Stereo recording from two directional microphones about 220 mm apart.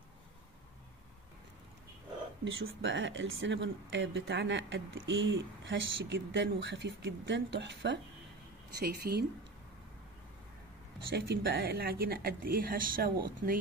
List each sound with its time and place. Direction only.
2.4 s speech: 60° right (ahead or behind); by 9.2 s 45° right (ahead or behind)
11.1 s speech: 45° right (ahead or behind)